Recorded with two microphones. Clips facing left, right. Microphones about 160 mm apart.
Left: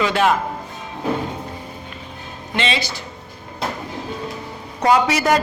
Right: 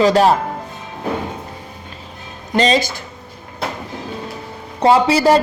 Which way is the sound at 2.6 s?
40° right (ahead or behind).